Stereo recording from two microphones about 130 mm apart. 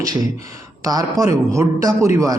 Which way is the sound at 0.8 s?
25° right (ahead or behind).